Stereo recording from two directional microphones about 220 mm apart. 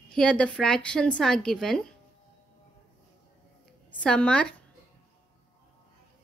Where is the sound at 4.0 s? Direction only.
5° left (ahead or behind).